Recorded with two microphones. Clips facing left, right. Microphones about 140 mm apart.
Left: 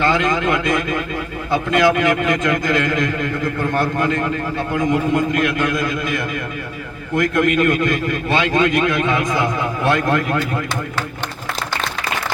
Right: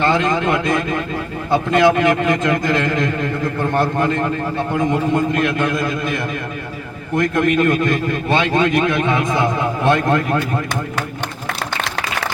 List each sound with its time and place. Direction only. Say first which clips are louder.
0.0 s a man's voice: right 1 dB; 25° right (ahead or behind)